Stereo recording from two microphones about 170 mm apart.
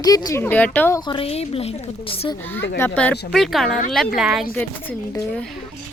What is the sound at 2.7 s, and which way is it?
A woman's voice, 10° left (ahead or behind).